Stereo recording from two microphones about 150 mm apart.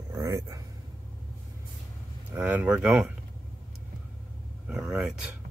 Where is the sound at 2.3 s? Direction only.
10° right (ahead or behind).